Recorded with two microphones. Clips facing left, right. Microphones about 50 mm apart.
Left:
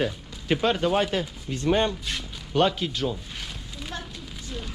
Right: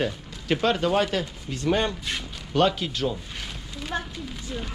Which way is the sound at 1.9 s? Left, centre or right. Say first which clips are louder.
Even; centre.